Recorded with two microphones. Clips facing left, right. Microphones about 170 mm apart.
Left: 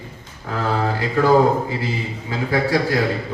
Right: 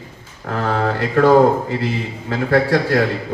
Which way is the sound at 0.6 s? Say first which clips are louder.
Right 2 dB; 65° right (ahead or behind).